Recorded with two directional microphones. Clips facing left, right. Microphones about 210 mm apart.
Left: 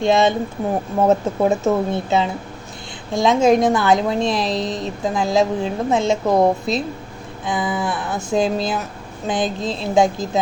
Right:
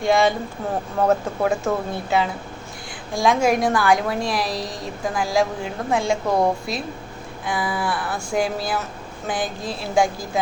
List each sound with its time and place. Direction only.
0.0 s a woman's voice: 20° left (ahead or behind)